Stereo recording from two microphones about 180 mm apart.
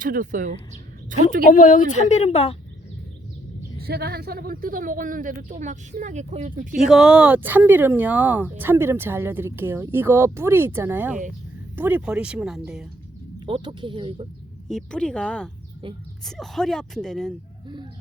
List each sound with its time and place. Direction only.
0.0 s a woman's voice: 45° right (ahead or behind)
1.5 s speech: 50° left (ahead or behind)
3.8 s a woman's voice: 60° right (ahead or behind); by 6.7 s 40° right (ahead or behind)
6.8 s speech: 5° right (ahead or behind)
13.4 s speech: 25° right (ahead or behind)
14.7 s speech: 5° left (ahead or behind)